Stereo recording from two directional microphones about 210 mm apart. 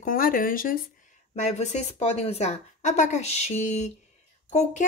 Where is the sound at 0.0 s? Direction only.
40° left (ahead or behind).